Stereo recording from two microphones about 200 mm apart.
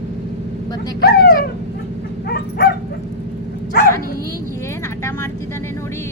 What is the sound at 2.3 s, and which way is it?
Dog, 50° left (ahead or behind).